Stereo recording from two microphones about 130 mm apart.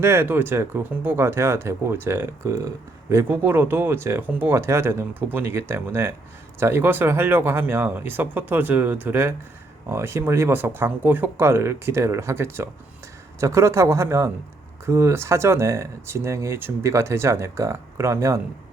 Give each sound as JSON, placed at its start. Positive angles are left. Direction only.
{"t": 0.0, "sound": "speech", "side_deg": -20}